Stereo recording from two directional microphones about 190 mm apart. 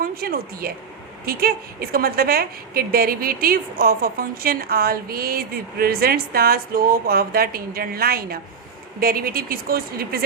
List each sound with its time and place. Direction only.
0.0 s a woman's voice: 50° right (ahead or behind)